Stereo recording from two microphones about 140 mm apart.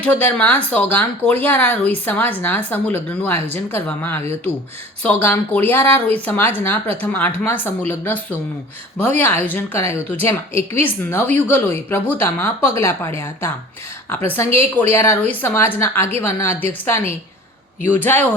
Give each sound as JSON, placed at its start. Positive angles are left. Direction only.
{"t": 0.0, "sound": "speech", "side_deg": 10}